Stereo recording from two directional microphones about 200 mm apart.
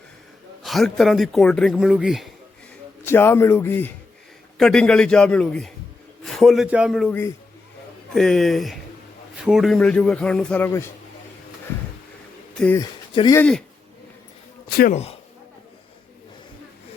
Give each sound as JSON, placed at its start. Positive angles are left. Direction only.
{"t": 0.6, "sound": "speech", "side_deg": 0}
{"t": 3.1, "sound": "speech", "side_deg": 10}
{"t": 12.5, "sound": "speech", "side_deg": 5}
{"t": 12.8, "sound": "speech", "side_deg": 20}
{"t": 14.8, "sound": "speech", "side_deg": 40}